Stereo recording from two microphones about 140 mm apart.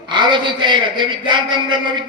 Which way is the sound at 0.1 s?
35° right (ahead or behind).